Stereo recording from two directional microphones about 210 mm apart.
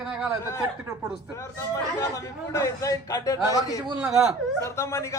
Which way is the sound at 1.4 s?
15° left (ahead or behind).